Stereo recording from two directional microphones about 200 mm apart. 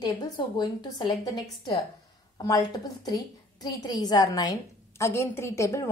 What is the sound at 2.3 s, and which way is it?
A woman's voice, 20° left (ahead or behind).